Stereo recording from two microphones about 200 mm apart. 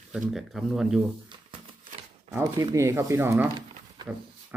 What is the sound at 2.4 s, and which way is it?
Speech, 15° right (ahead or behind).